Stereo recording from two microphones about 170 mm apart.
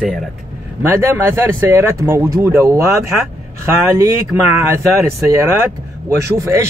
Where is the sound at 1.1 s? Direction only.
15° right (ahead or behind).